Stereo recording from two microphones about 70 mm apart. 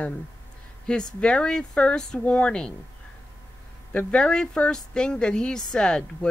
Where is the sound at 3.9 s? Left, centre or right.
Centre.